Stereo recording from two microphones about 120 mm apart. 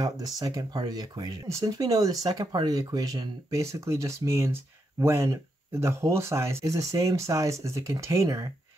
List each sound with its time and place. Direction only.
0.0 s speech: 30° right (ahead or behind)